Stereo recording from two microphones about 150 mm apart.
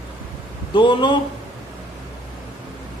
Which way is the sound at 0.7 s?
30° left (ahead or behind).